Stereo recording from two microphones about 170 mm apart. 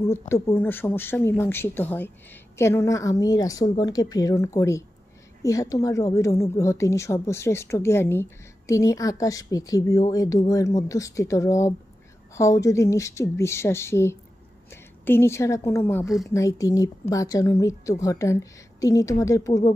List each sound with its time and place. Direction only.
0.3 s a woman's voice: 15° left (ahead or behind)